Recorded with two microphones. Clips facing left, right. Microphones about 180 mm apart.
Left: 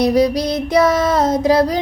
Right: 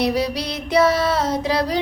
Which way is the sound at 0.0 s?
40° left (ahead or behind).